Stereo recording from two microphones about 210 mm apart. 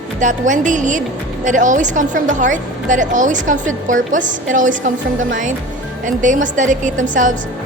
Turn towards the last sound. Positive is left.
turn(degrees=-35)  # may be behind; listen again after turning